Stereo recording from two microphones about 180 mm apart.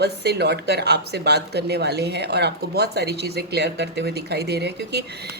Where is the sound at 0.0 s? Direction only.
65° right (ahead or behind).